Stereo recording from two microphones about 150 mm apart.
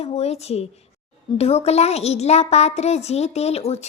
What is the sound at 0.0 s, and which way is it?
Speech, 45° left (ahead or behind).